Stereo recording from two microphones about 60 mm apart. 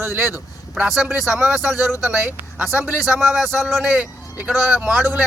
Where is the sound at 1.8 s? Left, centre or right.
Right.